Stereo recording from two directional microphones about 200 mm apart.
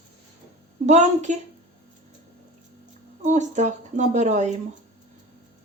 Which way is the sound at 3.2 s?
35° right (ahead or behind).